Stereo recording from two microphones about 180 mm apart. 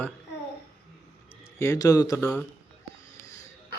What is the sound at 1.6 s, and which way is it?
Speech, 20° left (ahead or behind).